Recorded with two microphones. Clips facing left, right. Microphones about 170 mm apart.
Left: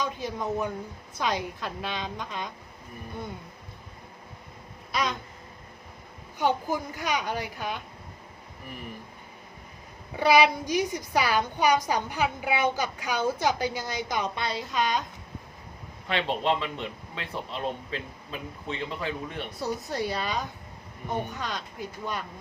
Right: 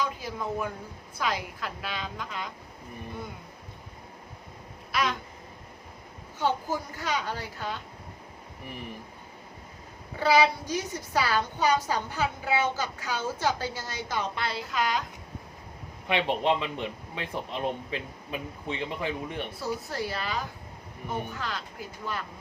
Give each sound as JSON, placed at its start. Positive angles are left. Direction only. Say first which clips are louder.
{"t": 0.2, "sound": "a woman's voice", "louder": "left 2 dB", "side_deg": 20}
{"t": 4.9, "sound": "a sound", "louder": "even", "side_deg": 20}
{"t": 6.4, "sound": "a woman's voice", "louder": "left 2 dB", "side_deg": 15}
{"t": 10.2, "sound": "a woman's voice", "louder": "left 2 dB", "side_deg": 15}
{"t": 16.0, "sound": "speech", "louder": "right 1 dB", "side_deg": -15}
{"t": 19.5, "sound": "a woman's voice", "louder": "left 5 dB", "side_deg": 20}